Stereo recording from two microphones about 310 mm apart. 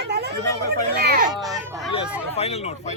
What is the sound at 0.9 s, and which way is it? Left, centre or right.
Speech, right.